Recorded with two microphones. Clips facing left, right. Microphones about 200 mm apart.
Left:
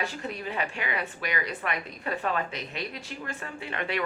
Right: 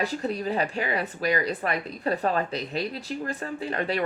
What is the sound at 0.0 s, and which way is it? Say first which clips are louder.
Speech: right 6 dB; 35° right (ahead or behind).